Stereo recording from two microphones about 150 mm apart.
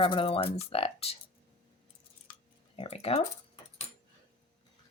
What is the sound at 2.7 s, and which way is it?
Speech, 40° left (ahead or behind).